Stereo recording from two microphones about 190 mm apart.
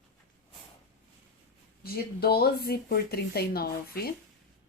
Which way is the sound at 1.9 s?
55° left (ahead or behind).